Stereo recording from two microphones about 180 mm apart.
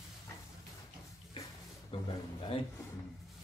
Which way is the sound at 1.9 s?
30° left (ahead or behind).